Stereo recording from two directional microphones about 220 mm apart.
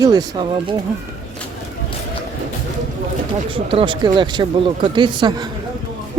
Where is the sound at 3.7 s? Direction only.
25° right (ahead or behind).